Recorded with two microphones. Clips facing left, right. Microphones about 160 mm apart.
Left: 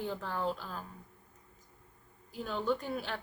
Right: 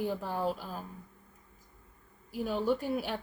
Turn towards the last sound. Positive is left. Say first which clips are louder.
# right 3 dB
turn(degrees=-10)  # may be behind; listen again after turning